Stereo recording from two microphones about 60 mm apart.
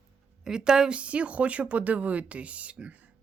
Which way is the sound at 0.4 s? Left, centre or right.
Centre.